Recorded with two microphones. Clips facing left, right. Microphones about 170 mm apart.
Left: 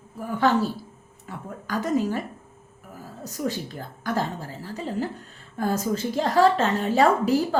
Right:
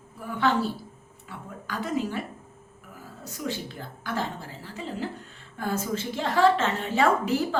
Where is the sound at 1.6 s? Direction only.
40° left (ahead or behind).